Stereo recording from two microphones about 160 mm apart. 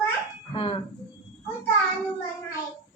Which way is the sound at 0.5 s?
35° left (ahead or behind).